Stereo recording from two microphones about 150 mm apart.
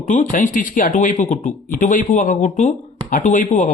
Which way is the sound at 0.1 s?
55° left (ahead or behind).